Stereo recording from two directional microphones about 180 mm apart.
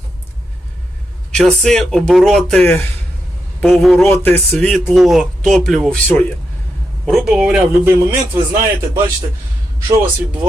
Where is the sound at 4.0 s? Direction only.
10° left (ahead or behind); by 8.2 s 5° right (ahead or behind).